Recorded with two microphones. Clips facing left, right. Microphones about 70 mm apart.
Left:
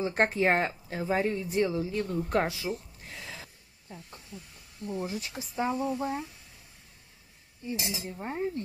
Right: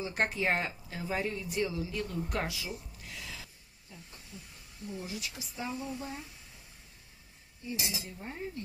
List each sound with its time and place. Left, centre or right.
0.0 s speech: left
3.1 s a sound: left
3.9 s speech: left
7.6 s speech: left